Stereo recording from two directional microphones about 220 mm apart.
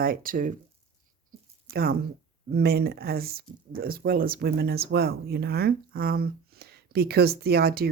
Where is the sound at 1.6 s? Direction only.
45° right (ahead or behind).